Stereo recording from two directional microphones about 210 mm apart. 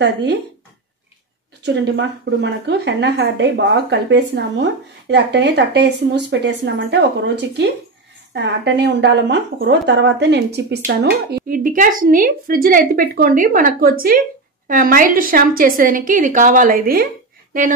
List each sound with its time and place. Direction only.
0.0 s speech: 55° right (ahead or behind)
1.6 s a woman's voice: 55° right (ahead or behind)